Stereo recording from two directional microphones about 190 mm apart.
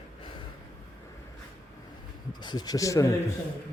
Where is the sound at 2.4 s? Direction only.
20° left (ahead or behind).